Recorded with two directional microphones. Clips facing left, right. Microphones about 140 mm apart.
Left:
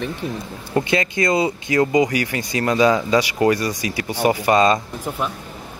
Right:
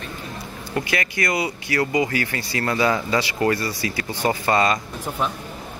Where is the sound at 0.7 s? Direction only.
25° left (ahead or behind).